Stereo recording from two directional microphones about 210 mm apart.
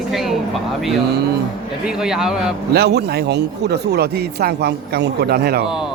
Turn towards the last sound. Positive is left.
turn(degrees=-50)  # may be behind; listen again after turning